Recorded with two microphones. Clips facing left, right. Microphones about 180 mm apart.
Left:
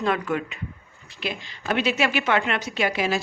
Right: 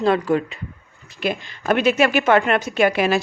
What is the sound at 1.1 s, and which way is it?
A woman's voice, 50° right (ahead or behind).